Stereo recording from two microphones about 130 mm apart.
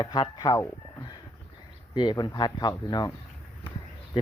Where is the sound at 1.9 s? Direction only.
35° left (ahead or behind).